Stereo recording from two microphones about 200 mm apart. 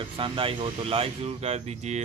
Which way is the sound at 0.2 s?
25° right (ahead or behind).